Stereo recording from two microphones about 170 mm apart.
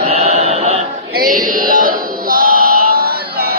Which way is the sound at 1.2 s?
55° right (ahead or behind).